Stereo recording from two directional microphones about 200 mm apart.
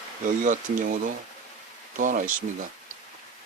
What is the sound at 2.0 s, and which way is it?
Speech, 40° right (ahead or behind).